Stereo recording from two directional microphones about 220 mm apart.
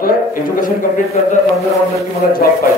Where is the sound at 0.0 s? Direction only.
40° left (ahead or behind).